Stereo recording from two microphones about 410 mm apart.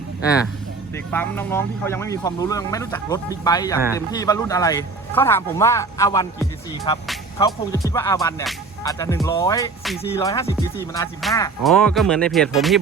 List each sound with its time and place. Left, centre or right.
0.9 s speech: centre